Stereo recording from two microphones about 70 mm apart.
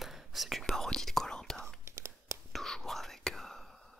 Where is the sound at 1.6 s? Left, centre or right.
Right.